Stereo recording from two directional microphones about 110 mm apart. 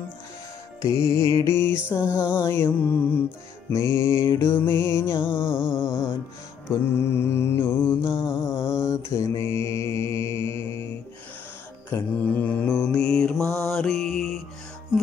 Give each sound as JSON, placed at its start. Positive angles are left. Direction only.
{"t": 0.8, "sound": "music", "side_deg": 25}
{"t": 2.2, "sound": "music", "side_deg": 40}
{"t": 2.5, "sound": "music", "side_deg": 15}
{"t": 5.4, "sound": "a sound", "side_deg": -5}
{"t": 6.7, "sound": "mantra", "side_deg": 25}
{"t": 11.9, "sound": "mantra", "side_deg": 25}